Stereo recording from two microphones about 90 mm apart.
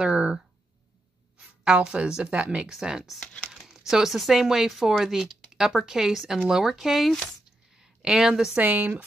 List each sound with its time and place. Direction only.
0.0 s a sound: 10° right (ahead or behind)
1.4 s a woman's voice: 10° right (ahead or behind)
8.6 s speech: 20° right (ahead or behind)